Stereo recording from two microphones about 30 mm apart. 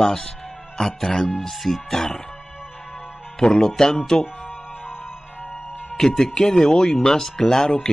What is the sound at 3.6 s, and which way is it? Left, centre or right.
Speech, left.